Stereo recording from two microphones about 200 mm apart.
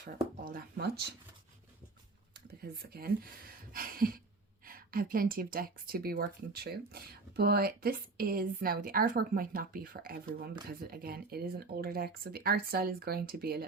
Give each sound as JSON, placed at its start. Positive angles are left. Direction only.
{"t": 0.0, "sound": "speech", "side_deg": -45}
{"t": 2.6, "sound": "speech", "side_deg": -50}